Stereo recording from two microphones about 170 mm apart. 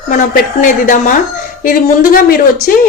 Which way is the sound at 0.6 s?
50° left (ahead or behind).